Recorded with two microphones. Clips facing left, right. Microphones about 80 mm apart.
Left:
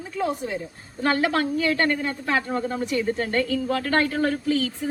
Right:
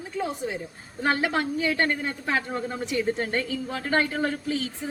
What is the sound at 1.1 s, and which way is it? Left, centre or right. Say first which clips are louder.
Speech: left 3 dB; centre.